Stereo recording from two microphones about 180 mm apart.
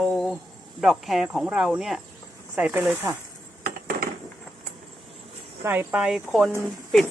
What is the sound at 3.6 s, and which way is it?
Dishes, 55° right (ahead or behind).